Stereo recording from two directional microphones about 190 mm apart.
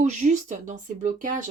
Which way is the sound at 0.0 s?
40° right (ahead or behind).